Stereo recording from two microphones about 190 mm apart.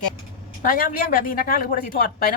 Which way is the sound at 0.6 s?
50° left (ahead or behind).